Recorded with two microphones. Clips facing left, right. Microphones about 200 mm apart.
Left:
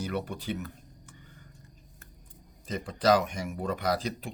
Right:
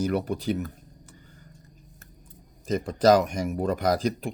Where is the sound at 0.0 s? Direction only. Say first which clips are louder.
Right 7 dB; 40° right (ahead or behind).